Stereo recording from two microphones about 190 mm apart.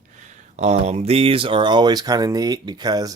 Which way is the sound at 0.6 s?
35° right (ahead or behind).